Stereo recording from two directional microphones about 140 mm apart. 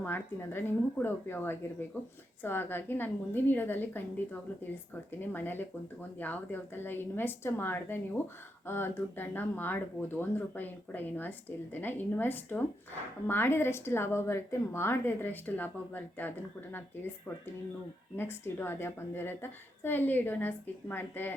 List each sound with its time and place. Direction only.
0.0 s a woman's voice: 15° left (ahead or behind)